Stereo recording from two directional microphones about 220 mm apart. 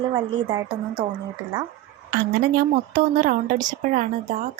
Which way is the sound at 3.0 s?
40° right (ahead or behind).